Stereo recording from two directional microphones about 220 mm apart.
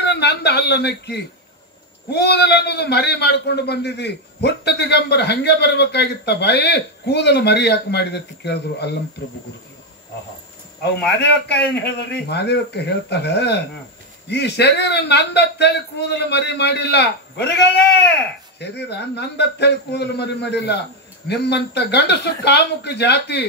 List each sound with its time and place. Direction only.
0.0 s a man's voice: 50° left (ahead or behind)
11.1 s a man's voice: 50° left (ahead or behind)